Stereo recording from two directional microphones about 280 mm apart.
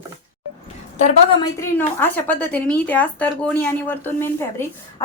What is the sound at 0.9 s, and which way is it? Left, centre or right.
Speech, left.